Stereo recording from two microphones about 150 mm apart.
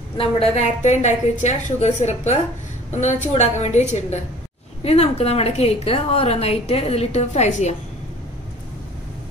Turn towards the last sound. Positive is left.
turn(degrees=50)  # may be behind; listen again after turning